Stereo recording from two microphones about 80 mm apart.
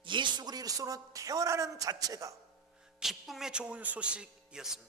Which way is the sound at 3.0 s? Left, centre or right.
Centre.